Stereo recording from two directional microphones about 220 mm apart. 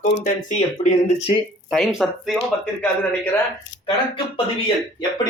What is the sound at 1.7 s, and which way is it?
A man's voice, centre (ahead or behind).